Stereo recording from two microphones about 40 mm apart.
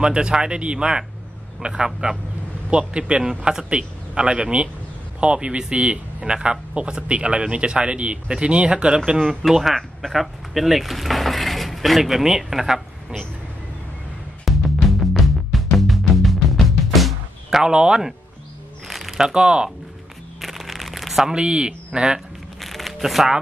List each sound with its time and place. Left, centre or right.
0.0 s speech: right
9.4 s speech: centre
12.0 s speech: centre
14.4 s music: centre
17.6 s speech: centre
18.9 s a sound: centre
19.1 s speech: centre
20.3 s a sound: centre
21.3 s speech: right
22.6 s crumpling: centre